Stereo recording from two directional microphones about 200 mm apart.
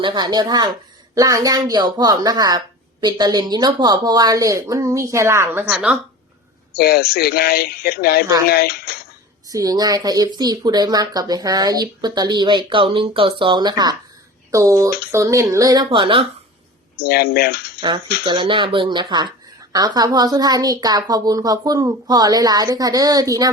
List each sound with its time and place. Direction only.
0.0 s speech: 20° right (ahead or behind); by 6.0 s 5° right (ahead or behind)
6.7 s speech: 50° left (ahead or behind)
9.5 s speech: 15° right (ahead or behind)
17.0 s speech: 50° left (ahead or behind)
17.7 s speech: 25° right (ahead or behind)